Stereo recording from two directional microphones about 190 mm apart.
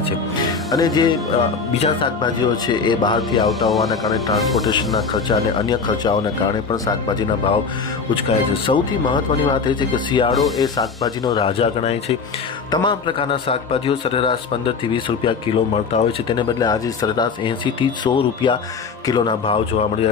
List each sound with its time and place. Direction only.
0.7 s speech: 20° left (ahead or behind)
3.4 s speech: centre (ahead or behind)
4.6 s speech: 25° left (ahead or behind)